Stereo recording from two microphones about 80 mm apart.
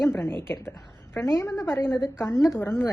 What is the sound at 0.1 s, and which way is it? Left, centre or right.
A woman's voice, left.